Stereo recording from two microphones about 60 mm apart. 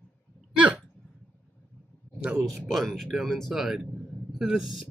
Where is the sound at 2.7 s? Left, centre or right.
Centre.